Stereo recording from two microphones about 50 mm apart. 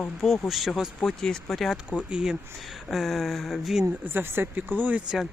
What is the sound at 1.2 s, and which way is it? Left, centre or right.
Speech, centre.